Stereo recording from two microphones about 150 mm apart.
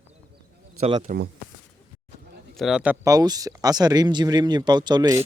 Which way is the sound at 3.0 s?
25° right (ahead or behind).